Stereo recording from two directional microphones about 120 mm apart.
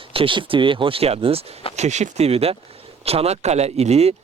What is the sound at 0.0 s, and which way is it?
Speech, 50° right (ahead or behind).